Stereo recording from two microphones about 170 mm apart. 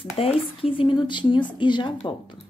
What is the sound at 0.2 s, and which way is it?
Speech, 35° left (ahead or behind).